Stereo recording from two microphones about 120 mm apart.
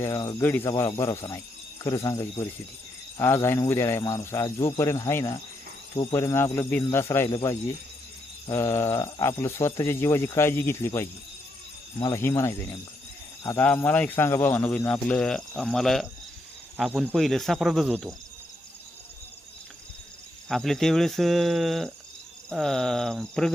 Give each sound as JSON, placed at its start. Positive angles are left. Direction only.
{"t": 0.0, "sound": "speech", "side_deg": 25}
{"t": 8.5, "sound": "speech", "side_deg": 20}
{"t": 17.2, "sound": "speech", "side_deg": 0}
{"t": 20.5, "sound": "speech", "side_deg": 0}